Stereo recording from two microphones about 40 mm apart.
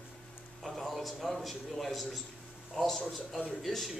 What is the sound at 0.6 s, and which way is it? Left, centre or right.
A man's voice, centre.